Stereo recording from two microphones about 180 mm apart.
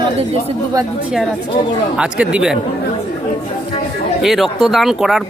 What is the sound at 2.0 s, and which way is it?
Speech, 5° right (ahead or behind).